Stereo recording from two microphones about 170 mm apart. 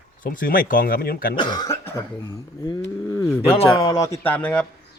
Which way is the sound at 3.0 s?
20° left (ahead or behind).